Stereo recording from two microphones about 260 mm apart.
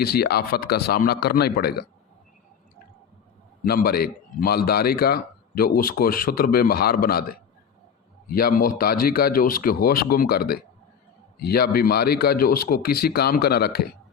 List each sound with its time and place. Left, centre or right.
0.0 s a man's voice: left
3.6 s a man's voice: left